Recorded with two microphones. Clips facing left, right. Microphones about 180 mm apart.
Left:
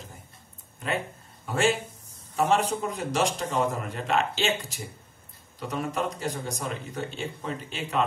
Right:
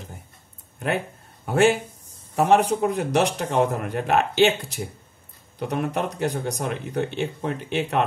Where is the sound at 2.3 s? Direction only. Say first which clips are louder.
Right 5 dB; 60° right (ahead or behind).